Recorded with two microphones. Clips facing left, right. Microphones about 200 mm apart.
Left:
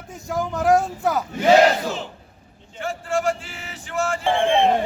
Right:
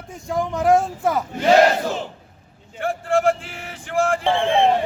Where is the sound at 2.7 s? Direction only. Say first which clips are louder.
Right 4 dB; 55° right (ahead or behind).